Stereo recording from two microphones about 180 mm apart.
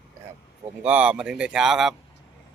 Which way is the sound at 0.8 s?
5° right (ahead or behind).